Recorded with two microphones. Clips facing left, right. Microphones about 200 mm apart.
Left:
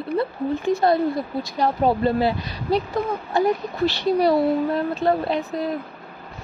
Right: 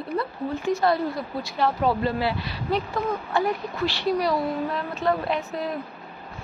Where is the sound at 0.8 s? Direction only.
45° left (ahead or behind); by 5.4 s 30° left (ahead or behind).